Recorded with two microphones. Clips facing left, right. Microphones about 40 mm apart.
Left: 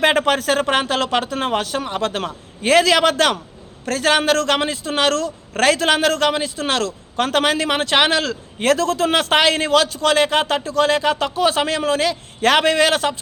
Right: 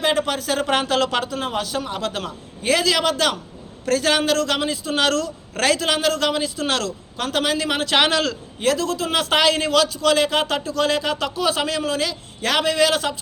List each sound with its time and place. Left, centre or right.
0.0 s a man's voice: left
0.7 s a man's voice: left
1.3 s a man's voice: left
1.8 s a man's voice: left
3.8 s a man's voice: left
6.2 s a man's voice: left
7.3 s a man's voice: left
7.7 s a man's voice: left
8.6 s a man's voice: left
9.3 s a man's voice: left